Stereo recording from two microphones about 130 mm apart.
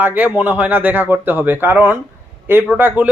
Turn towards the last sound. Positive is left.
turn(degrees=-10)  # may be behind; listen again after turning